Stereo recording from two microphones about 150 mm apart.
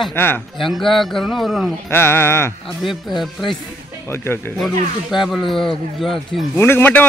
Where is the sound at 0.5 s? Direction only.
Centre (ahead or behind).